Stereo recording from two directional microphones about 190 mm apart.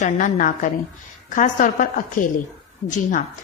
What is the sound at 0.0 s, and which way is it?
A woman's voice, 40° left (ahead or behind).